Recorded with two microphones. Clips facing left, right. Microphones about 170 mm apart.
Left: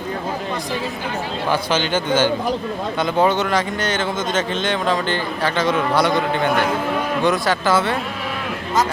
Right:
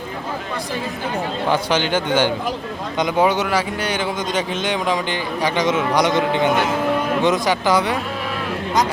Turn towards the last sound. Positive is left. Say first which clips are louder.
# even
turn(degrees=-15)  # may be behind; listen again after turning